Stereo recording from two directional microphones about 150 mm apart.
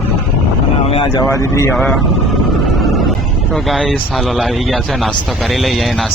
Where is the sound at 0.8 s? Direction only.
40° left (ahead or behind); by 1.7 s 20° left (ahead or behind).